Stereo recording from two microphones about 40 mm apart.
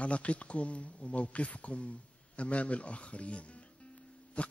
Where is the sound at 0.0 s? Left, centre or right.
Left.